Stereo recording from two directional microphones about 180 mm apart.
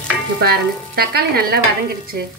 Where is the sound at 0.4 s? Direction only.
60° right (ahead or behind).